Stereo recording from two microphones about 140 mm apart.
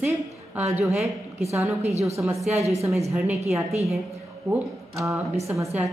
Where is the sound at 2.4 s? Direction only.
50° right (ahead or behind).